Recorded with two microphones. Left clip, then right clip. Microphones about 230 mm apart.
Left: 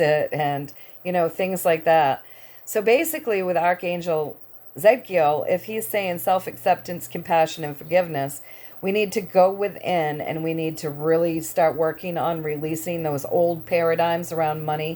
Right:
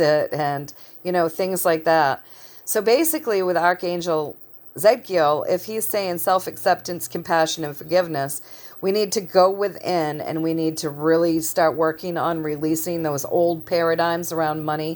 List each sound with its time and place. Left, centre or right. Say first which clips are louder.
0.0 s speech: right 1 dB; right